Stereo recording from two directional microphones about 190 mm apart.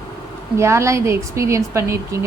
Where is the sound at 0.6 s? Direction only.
15° right (ahead or behind).